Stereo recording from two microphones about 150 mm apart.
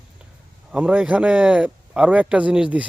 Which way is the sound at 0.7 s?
10° right (ahead or behind).